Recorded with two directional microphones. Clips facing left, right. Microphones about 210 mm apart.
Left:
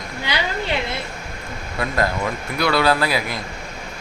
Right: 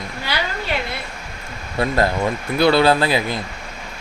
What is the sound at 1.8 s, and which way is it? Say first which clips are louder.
Speech: right 4 dB; 30° right (ahead or behind).